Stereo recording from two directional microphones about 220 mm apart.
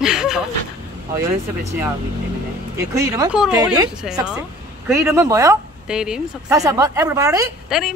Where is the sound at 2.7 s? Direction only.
15° right (ahead or behind).